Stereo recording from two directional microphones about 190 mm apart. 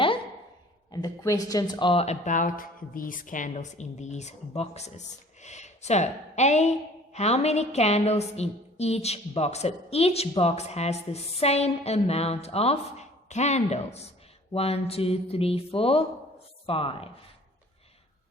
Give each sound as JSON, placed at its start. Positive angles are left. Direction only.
{"t": 0.9, "sound": "speech", "side_deg": 20}